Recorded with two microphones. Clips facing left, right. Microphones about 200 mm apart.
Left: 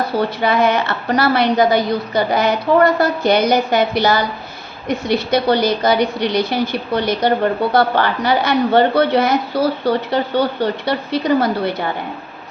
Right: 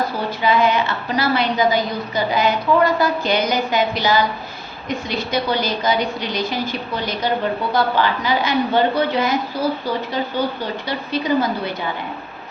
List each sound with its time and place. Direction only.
0.4 s a woman's voice: 60° left (ahead or behind)